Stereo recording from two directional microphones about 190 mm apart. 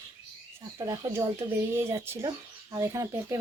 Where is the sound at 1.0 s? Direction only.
15° right (ahead or behind).